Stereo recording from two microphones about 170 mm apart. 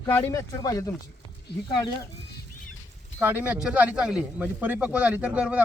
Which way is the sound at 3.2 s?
10° right (ahead or behind).